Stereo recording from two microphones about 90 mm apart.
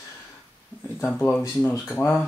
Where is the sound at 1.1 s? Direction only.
15° left (ahead or behind).